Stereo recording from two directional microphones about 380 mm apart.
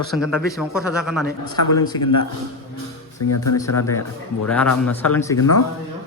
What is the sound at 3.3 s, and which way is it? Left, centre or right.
Speech, left.